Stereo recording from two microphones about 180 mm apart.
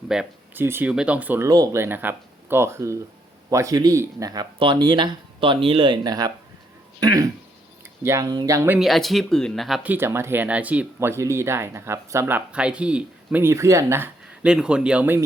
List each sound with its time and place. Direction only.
0.1 s speech: 5° right (ahead or behind)
8.8 s speech: centre (ahead or behind)